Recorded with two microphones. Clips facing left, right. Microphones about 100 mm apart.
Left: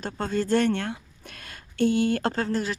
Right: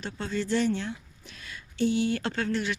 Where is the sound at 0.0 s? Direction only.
45° left (ahead or behind).